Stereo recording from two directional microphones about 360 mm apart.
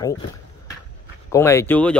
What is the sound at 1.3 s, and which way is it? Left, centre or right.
Speech, centre.